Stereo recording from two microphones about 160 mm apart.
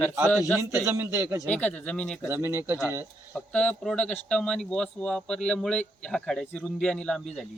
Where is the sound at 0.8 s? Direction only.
15° right (ahead or behind).